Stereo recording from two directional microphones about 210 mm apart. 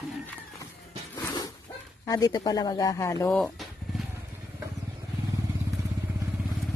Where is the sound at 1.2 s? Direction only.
15° left (ahead or behind).